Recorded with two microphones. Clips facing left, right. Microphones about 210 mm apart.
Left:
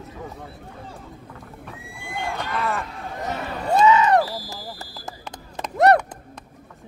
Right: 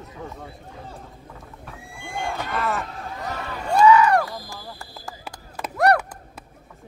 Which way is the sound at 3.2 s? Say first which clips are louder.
Left 4 dB; 20° left (ahead or behind).